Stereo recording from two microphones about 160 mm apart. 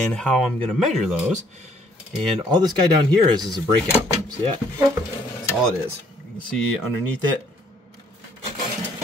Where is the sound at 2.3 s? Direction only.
25° right (ahead or behind).